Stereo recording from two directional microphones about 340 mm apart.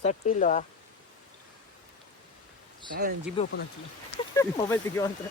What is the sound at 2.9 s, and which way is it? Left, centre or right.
Speech, right.